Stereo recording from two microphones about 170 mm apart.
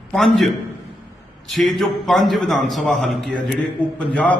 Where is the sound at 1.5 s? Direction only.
Centre (ahead or behind).